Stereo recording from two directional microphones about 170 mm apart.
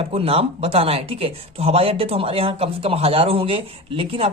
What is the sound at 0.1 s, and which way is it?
Speech, 35° right (ahead or behind).